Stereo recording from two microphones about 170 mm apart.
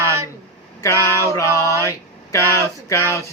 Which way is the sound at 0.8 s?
15° left (ahead or behind).